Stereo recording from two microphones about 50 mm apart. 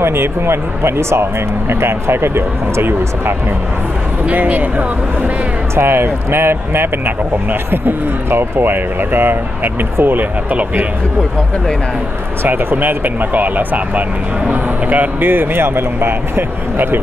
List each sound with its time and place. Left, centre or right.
0.0 s speech: right
4.3 s speech: right
5.8 s speech: right
12.4 s speech: right